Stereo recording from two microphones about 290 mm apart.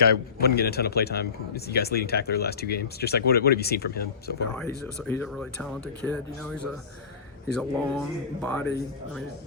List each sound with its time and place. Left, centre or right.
0.3 s speech: left
5.0 s speech: centre